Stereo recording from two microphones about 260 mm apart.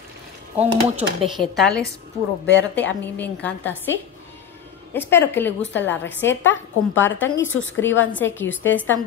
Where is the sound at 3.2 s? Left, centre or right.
Centre.